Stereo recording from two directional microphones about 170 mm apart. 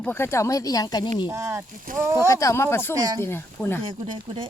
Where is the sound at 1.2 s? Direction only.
15° right (ahead or behind).